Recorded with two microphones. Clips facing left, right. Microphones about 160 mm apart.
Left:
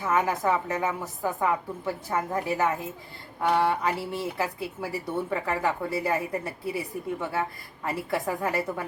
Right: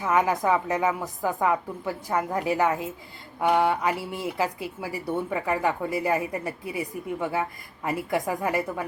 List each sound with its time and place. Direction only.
0.0 s speech: 15° right (ahead or behind)